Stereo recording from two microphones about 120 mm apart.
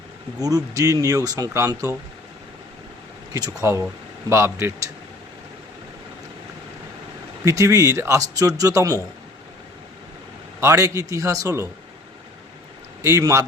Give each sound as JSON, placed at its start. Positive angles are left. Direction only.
{"t": 0.4, "sound": "speech", "side_deg": -30}
{"t": 3.3, "sound": "speech", "side_deg": -25}
{"t": 7.4, "sound": "speech", "side_deg": -25}
{"t": 10.6, "sound": "speech", "side_deg": -25}
{"t": 13.0, "sound": "speech", "side_deg": -25}